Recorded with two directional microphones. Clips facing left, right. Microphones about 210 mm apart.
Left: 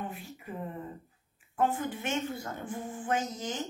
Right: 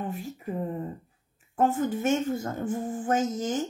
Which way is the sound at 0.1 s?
40° right (ahead or behind).